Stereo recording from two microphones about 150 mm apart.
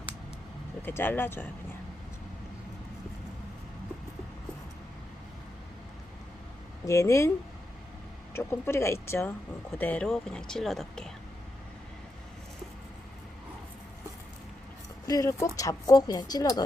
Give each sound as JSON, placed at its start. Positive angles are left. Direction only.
{"t": 0.8, "sound": "speech", "side_deg": 15}
{"t": 6.8, "sound": "speech", "side_deg": 20}
{"t": 8.3, "sound": "speech", "side_deg": 15}
{"t": 15.0, "sound": "speech", "side_deg": 25}